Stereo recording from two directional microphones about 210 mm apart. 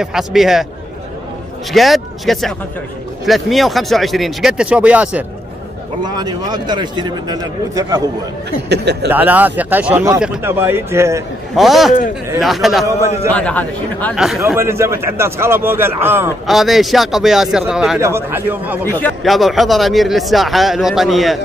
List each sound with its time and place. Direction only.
0.0 s speech: centre (ahead or behind)
1.7 s speech: centre (ahead or behind)
6.0 s a man's voice: 20° right (ahead or behind)
8.6 s speech: 50° right (ahead or behind)
9.1 s a man's voice: 10° right (ahead or behind)
11.5 s speech: centre (ahead or behind)
14.4 s a man's voice: 10° right (ahead or behind)
18.9 s speech: 10° left (ahead or behind)